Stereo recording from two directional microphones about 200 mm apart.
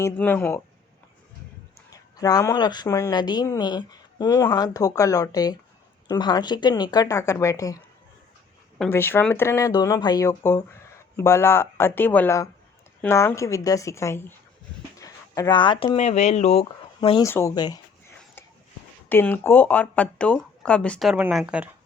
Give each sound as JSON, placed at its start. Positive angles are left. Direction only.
{"t": 0.0, "sound": "speech", "side_deg": 10}
{"t": 1.9, "sound": "speech", "side_deg": 20}
{"t": 8.8, "sound": "speech", "side_deg": 10}
{"t": 14.9, "sound": "a sound", "side_deg": 15}
{"t": 16.0, "sound": "speech", "side_deg": 35}
{"t": 17.2, "sound": "speech", "side_deg": 15}
{"t": 19.0, "sound": "speech", "side_deg": 10}